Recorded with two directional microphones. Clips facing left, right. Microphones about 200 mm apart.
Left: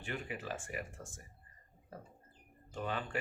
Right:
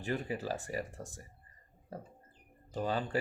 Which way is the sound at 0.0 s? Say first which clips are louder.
Right 6 dB; 35° right (ahead or behind).